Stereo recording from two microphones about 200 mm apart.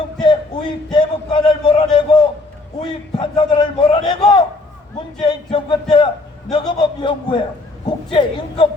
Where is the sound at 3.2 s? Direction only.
25° left (ahead or behind).